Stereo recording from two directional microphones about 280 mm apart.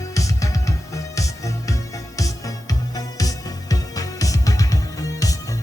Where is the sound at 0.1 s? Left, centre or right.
Centre.